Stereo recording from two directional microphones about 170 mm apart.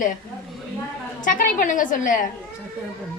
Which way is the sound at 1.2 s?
50° left (ahead or behind).